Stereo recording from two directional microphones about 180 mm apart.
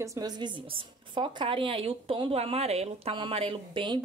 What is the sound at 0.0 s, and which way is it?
A woman's voice, 20° right (ahead or behind).